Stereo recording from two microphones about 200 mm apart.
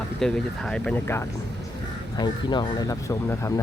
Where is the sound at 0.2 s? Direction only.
5° left (ahead or behind).